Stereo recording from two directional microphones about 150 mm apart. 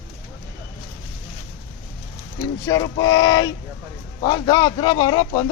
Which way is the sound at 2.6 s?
25° left (ahead or behind).